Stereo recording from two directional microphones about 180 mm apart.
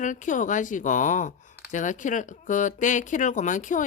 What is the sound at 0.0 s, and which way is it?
Speech, 45° left (ahead or behind).